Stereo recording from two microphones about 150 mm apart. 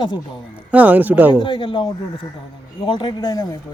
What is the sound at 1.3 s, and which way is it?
Speech, 30° left (ahead or behind).